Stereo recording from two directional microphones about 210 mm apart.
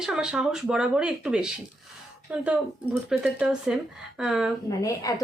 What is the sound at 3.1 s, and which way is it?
Speech, 5° right (ahead or behind).